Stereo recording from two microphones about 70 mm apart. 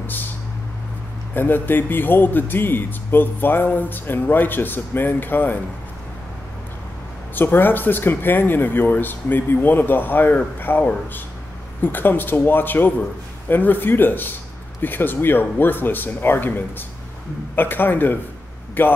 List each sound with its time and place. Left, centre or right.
0.0 s a sound: left
1.3 s speech: left
7.3 s speech: left